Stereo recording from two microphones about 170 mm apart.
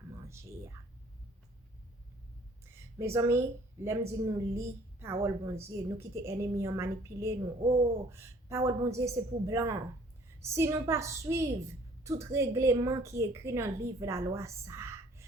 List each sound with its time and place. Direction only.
0.3 s whispering: 15° right (ahead or behind)
2.6 s a sound: 15° right (ahead or behind)
3.8 s a woman's voice: 15° right (ahead or behind)